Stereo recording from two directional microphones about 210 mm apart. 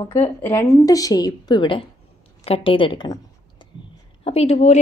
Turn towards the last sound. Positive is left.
turn(degrees=30)  # may be behind; listen again after turning